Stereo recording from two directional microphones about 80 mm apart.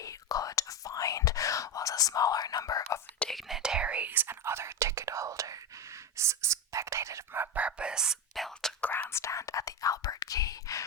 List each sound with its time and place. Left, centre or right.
0.0 s whispering: left
3.2 s whispering: centre; by 7.6 s right
7.6 s whispering: centre
8.8 s whispering: centre
9.0 s whispering: left